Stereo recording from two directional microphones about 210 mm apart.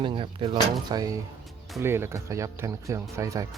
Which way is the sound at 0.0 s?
25° right (ahead or behind).